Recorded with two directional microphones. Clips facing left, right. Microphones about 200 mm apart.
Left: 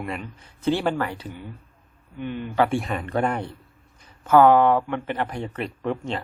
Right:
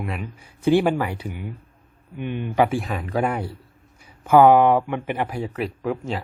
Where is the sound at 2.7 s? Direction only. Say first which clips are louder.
Even; centre (ahead or behind).